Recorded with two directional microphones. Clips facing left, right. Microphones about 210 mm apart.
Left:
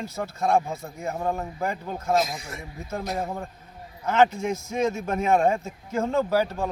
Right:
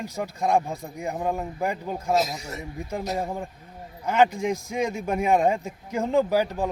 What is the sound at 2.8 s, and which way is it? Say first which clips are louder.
A man's voice: right 1 dB; 15° right (ahead or behind).